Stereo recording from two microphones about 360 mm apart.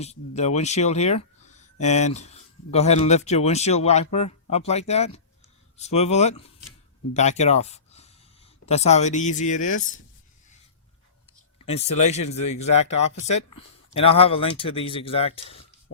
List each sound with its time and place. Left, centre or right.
0.0 s speech: centre
12.0 s speech: centre
12.7 s speech: left
13.9 s speech: centre